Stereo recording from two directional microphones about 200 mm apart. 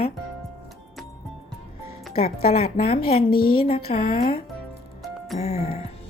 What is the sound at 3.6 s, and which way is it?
Speech, 30° left (ahead or behind).